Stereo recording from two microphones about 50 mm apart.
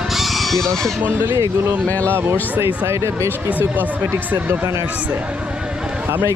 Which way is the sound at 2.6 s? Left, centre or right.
Right.